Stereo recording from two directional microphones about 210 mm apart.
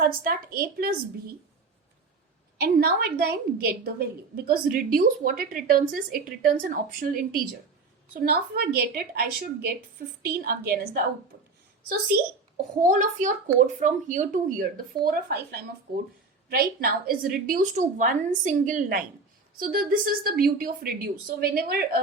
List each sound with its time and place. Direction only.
0.0 s a woman's voice: 45° right (ahead or behind)
2.6 s a woman's voice: 45° right (ahead or behind)
12.8 s a woman's voice: 40° right (ahead or behind)